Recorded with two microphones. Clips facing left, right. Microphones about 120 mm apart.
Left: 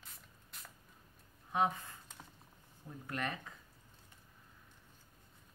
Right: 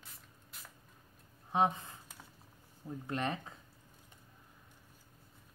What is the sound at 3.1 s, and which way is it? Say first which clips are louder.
Speech: right 4 dB; 25° right (ahead or behind).